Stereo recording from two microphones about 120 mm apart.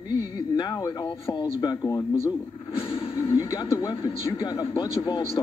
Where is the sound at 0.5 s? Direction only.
35° left (ahead or behind).